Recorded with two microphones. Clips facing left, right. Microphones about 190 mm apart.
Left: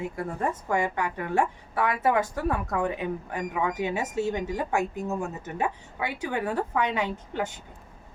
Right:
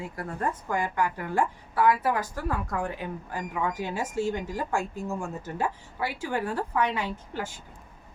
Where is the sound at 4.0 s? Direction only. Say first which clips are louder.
Left 1 dB; 20° left (ahead or behind).